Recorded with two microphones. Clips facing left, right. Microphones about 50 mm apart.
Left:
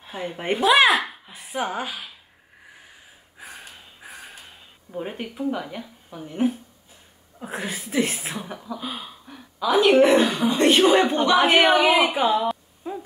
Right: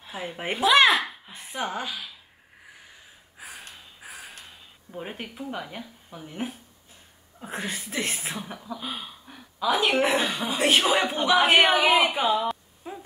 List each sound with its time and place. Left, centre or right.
0.0 s speech: centre
3.3 s gasp: centre
4.9 s speech: centre